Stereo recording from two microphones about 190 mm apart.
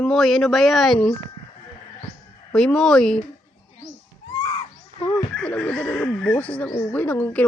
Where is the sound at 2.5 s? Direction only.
5° left (ahead or behind).